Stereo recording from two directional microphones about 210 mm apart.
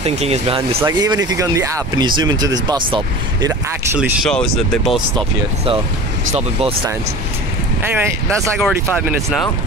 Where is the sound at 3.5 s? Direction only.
10° right (ahead or behind).